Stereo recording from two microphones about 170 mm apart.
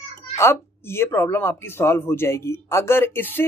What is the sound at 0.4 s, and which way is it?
Speech, 15° left (ahead or behind).